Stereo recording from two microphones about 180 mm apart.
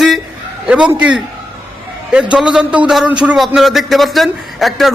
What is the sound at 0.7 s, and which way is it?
Speech, 5° right (ahead or behind).